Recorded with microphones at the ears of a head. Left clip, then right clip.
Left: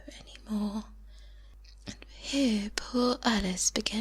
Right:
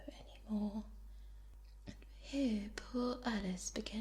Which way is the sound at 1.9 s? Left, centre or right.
Left.